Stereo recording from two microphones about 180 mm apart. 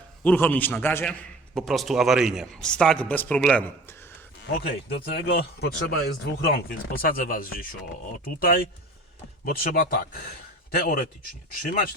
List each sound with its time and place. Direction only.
0.3 s a man's voice: 10° left (ahead or behind)
1.5 s a man's voice: centre (ahead or behind)
4.5 s speech: 55° left (ahead or behind)